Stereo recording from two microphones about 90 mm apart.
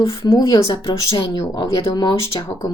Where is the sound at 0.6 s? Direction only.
70° left (ahead or behind).